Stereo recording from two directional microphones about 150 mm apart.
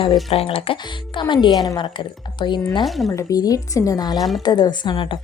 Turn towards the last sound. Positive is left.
turn(degrees=35)  # may be behind; listen again after turning